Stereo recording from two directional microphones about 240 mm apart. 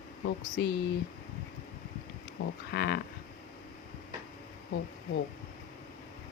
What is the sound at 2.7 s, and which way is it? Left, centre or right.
Speech, left.